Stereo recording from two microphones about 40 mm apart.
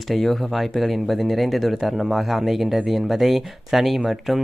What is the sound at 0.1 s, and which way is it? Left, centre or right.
Speech, centre.